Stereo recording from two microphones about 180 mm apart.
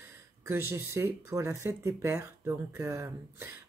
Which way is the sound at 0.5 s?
10° right (ahead or behind).